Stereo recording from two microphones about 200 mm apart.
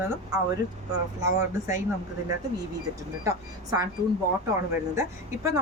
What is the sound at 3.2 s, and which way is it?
Speech, 20° right (ahead or behind).